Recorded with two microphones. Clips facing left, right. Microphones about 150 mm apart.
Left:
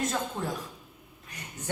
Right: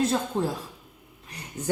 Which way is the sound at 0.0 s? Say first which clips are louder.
Right 6 dB; 30° right (ahead or behind).